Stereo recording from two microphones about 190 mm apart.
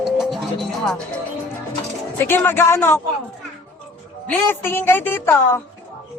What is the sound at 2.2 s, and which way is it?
Music, 10° left (ahead or behind).